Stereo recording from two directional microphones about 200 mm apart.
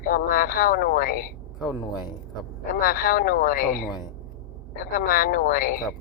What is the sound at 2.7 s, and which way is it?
Speech, 45° left (ahead or behind).